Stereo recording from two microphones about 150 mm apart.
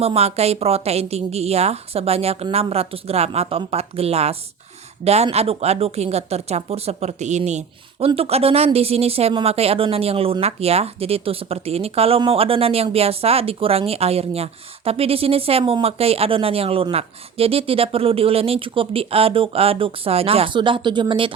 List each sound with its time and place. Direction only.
0.0 s a woman's voice: 45° right (ahead or behind)